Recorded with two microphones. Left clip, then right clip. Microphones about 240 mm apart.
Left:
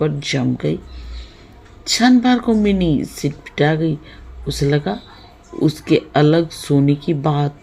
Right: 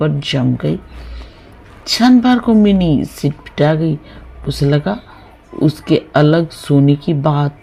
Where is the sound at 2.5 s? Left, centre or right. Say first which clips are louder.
Right 4 dB; right.